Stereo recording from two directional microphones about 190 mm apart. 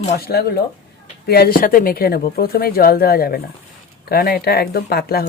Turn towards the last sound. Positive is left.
turn(degrees=55)  # may be behind; listen again after turning